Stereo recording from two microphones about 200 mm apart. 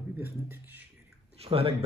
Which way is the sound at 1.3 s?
30° right (ahead or behind).